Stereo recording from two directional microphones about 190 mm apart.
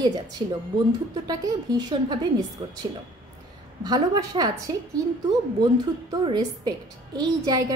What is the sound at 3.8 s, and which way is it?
A woman's voice, 20° right (ahead or behind).